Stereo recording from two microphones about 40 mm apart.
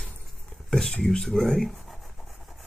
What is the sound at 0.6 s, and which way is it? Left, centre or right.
Speech, centre.